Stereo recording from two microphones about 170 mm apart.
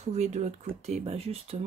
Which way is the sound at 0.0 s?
40° right (ahead or behind).